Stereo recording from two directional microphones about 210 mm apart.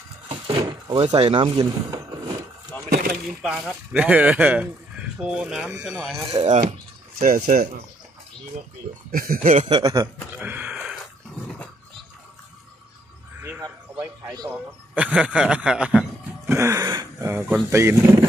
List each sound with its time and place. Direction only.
0.3 s speech: 25° right (ahead or behind)
3.4 s speech: 5° right (ahead or behind)
6.3 s speech: 30° right (ahead or behind)
7.2 s speech: 40° right (ahead or behind)
9.1 s speech: 45° right (ahead or behind)
9.7 s a sound: 20° right (ahead or behind)
13.4 s a sound: 10° right (ahead or behind)
14.5 s a man's voice: 5° right (ahead or behind)